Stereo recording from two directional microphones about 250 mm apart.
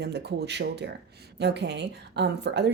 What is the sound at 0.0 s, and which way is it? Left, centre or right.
A woman's voice, right.